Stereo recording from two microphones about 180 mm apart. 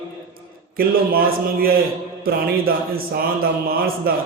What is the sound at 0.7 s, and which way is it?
A man's voice, 55° right (ahead or behind).